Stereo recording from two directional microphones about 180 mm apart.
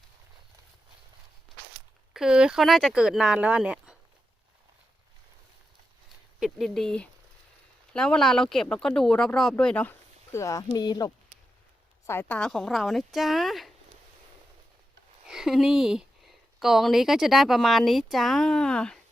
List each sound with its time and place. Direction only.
2.1 s speech: 5° right (ahead or behind)
6.4 s speech: centre (ahead or behind)
10.3 s speech: 20° left (ahead or behind)
12.0 s speech: 10° left (ahead or behind)
15.3 s speech: centre (ahead or behind)